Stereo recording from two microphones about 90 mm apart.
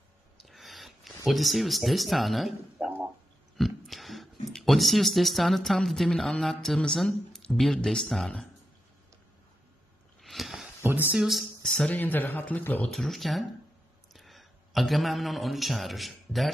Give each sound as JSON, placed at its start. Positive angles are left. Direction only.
{"t": 0.4, "sound": "a sound", "side_deg": 0}
{"t": 3.5, "sound": "speech", "side_deg": 0}
{"t": 10.2, "sound": "a sound", "side_deg": 0}
{"t": 10.8, "sound": "speech", "side_deg": -25}
{"t": 11.1, "sound": "speech", "side_deg": 0}
{"t": 12.0, "sound": "speech", "side_deg": 20}
{"t": 12.8, "sound": "a man's voice", "side_deg": 5}